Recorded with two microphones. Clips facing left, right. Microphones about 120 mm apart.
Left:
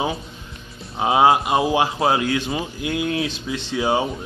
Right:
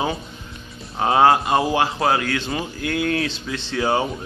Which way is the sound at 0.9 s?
15° left (ahead or behind).